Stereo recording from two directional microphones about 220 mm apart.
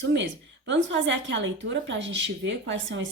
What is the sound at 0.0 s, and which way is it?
A woman's voice, 55° right (ahead or behind).